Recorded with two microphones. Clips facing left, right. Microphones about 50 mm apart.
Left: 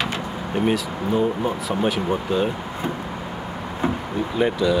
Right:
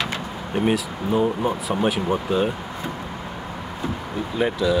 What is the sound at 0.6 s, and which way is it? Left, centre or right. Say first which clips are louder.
Speech: even; centre.